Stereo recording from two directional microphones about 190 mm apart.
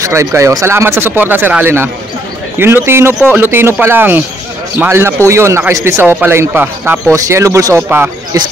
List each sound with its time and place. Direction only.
0.0 s a man's voice: 15° right (ahead or behind)